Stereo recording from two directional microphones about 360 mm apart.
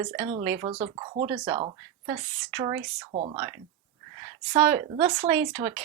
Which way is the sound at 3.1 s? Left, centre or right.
Centre.